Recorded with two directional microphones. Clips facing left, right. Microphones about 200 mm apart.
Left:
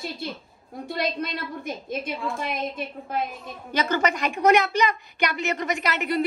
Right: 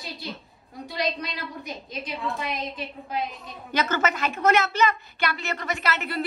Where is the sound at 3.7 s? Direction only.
10° left (ahead or behind).